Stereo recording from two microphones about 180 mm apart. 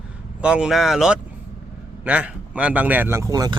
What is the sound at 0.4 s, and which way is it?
Speech, 5° right (ahead or behind).